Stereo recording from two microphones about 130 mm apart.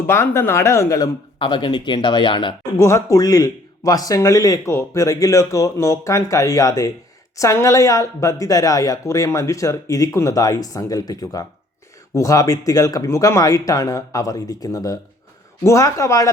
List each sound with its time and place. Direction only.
0.1 s speech: 20° left (ahead or behind); by 2.6 s 40° left (ahead or behind)
2.7 s speech: 25° left (ahead or behind)